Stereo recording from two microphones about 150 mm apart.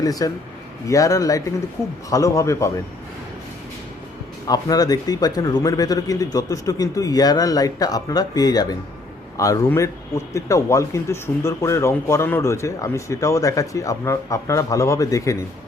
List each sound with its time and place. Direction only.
0.0 s a man's voice: 25° left (ahead or behind)
4.4 s a man's voice: 25° left (ahead or behind)